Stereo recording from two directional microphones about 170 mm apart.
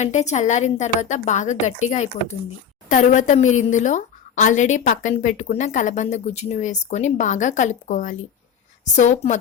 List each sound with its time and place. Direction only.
0.0 s a woman's voice: 45° left (ahead or behind)